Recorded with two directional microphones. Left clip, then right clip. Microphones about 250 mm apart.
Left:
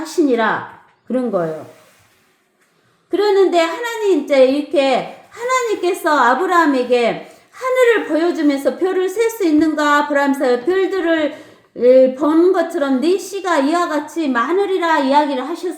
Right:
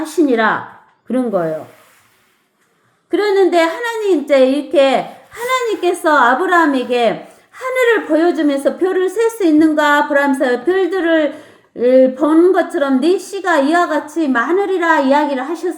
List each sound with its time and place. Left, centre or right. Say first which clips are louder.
0.0 s a woman's voice: right 2 dB; right
3.1 s a woman's voice: right 1 dB; right